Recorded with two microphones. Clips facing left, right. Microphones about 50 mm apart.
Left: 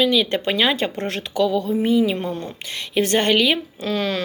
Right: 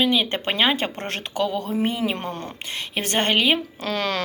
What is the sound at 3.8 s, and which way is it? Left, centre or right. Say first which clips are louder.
Speech: left 2 dB; right.